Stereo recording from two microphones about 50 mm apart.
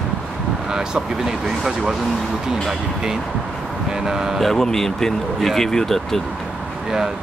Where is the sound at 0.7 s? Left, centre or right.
Centre.